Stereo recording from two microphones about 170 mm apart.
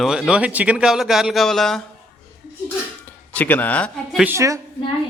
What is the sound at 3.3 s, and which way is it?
Speech, 10° left (ahead or behind).